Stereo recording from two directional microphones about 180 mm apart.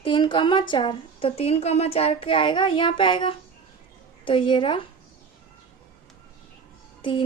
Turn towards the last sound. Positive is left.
turn(degrees=25)  # may be behind; listen again after turning